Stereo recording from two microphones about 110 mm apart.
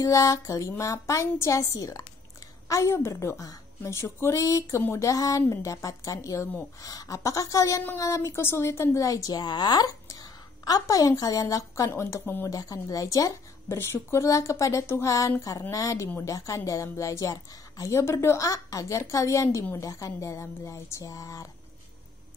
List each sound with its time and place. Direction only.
0.0 s a woman's voice: 30° left (ahead or behind)